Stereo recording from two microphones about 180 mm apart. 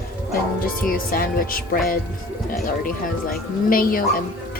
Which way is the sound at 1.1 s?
50° left (ahead or behind).